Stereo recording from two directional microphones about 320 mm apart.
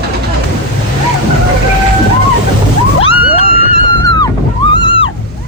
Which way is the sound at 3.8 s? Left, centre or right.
Centre.